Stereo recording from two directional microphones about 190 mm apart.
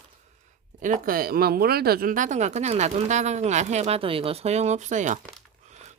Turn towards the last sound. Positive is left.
turn(degrees=-40)  # may be behind; listen again after turning